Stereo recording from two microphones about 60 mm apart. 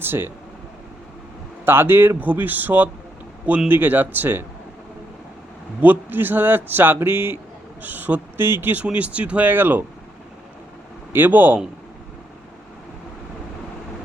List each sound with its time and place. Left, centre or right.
0.0 s speech: right
1.6 s speech: right
5.8 s speech: right
8.8 s speech: right
11.1 s speech: right